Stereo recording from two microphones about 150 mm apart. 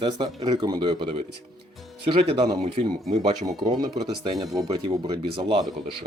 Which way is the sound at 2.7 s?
55° right (ahead or behind).